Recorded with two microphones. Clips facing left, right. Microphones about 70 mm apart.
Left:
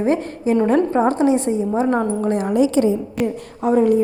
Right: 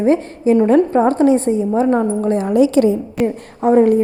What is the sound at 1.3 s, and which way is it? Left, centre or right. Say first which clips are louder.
Speech: right 4 dB; right.